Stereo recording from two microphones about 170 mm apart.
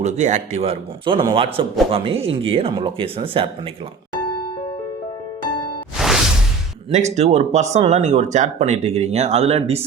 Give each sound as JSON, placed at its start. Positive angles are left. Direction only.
{"t": 0.0, "sound": "speech", "side_deg": -45}
{"t": 6.0, "sound": "whoosh", "side_deg": 0}
{"t": 6.9, "sound": "speech", "side_deg": -40}